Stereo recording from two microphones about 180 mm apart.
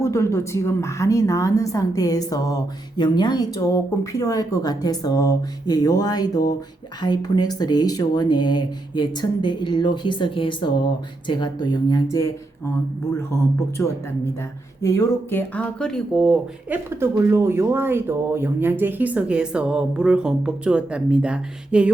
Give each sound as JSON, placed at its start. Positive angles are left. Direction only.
{"t": 0.0, "sound": "a woman's voice", "side_deg": 15}
{"t": 13.8, "sound": "speech", "side_deg": 15}